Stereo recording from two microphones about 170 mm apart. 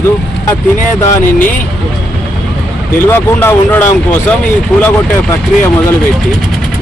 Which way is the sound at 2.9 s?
10° left (ahead or behind).